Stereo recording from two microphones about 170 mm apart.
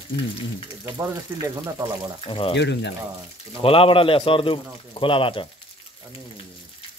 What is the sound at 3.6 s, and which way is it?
Speech, 30° left (ahead or behind).